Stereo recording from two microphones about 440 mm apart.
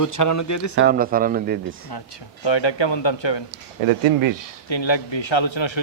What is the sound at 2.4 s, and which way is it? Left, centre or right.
Speech, left.